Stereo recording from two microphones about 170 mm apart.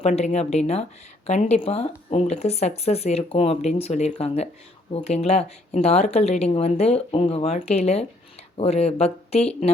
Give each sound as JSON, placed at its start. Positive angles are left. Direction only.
{"t": 0.0, "sound": "speech", "side_deg": 40}